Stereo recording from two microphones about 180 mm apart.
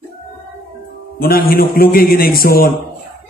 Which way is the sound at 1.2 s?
55° left (ahead or behind).